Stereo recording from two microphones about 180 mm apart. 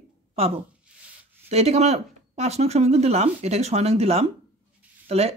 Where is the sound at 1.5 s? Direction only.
35° right (ahead or behind).